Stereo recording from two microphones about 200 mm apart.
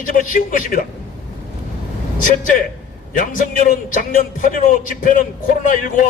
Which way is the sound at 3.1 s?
40° left (ahead or behind).